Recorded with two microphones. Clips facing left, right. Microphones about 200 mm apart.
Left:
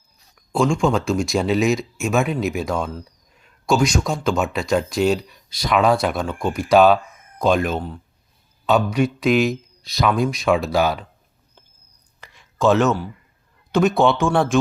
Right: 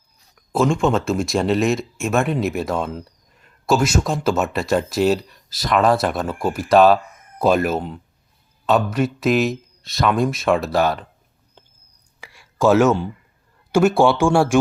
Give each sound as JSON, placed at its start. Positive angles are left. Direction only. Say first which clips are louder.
{"t": 0.5, "sound": "speech", "louder": "right 1 dB", "side_deg": 0}
{"t": 7.8, "sound": "speech", "louder": "right 2 dB", "side_deg": -20}
{"t": 8.6, "sound": "speech", "louder": "even", "side_deg": 0}
{"t": 12.2, "sound": "a sound", "louder": "right 1 dB", "side_deg": -10}
{"t": 13.7, "sound": "speech", "louder": "right 2 dB", "side_deg": -10}